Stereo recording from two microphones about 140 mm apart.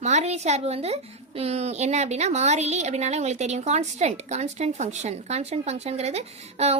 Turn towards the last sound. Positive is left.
turn(degrees=-50)  # may be behind; listen again after turning